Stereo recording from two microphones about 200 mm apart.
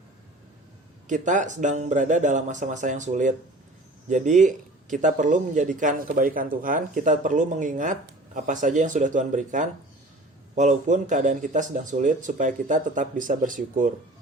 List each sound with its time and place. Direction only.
1.0 s speech: 40° right (ahead or behind)